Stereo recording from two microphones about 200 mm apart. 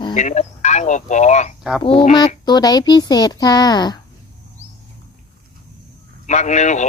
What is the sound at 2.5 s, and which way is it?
Speech, 20° left (ahead or behind).